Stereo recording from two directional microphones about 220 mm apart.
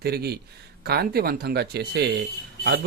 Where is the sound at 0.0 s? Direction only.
45° right (ahead or behind).